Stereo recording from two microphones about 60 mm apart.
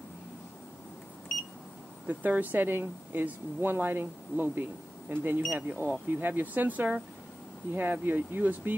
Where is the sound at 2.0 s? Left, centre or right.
Right.